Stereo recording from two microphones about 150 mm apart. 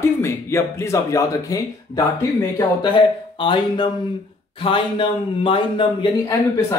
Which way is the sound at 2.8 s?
35° left (ahead or behind).